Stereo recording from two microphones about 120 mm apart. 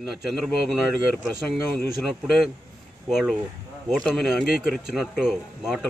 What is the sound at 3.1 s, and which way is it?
Speech, centre (ahead or behind).